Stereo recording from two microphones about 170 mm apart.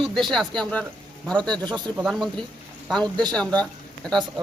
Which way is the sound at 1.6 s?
25° right (ahead or behind).